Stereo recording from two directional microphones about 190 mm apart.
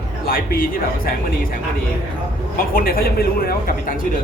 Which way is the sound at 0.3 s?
50° left (ahead or behind).